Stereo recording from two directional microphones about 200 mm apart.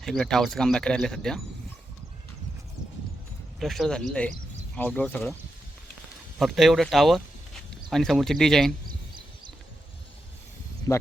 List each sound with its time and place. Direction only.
0.0 s speech: 5° left (ahead or behind)
3.6 s speech: centre (ahead or behind)
6.4 s speech: centre (ahead or behind)
10.9 s speech: 15° left (ahead or behind)